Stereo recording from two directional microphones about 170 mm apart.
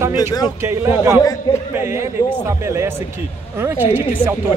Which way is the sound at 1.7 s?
15° right (ahead or behind).